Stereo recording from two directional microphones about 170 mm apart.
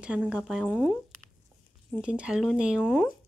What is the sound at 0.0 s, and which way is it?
Speech, 5° right (ahead or behind).